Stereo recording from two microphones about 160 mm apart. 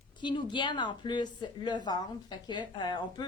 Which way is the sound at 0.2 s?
30° left (ahead or behind).